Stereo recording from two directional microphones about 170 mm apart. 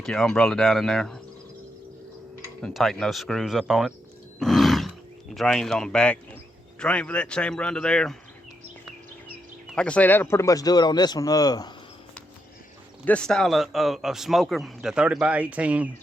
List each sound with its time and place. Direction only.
0.0 s a man's voice: 5° left (ahead or behind)
2.6 s a man's voice: 5° left (ahead or behind)
4.4 s roar: centre (ahead or behind)
5.3 s a man's voice: centre (ahead or behind)
9.6 s a man's voice: 5° left (ahead or behind); by 11.7 s 25° left (ahead or behind)
13.1 s a man's voice: 5° left (ahead or behind)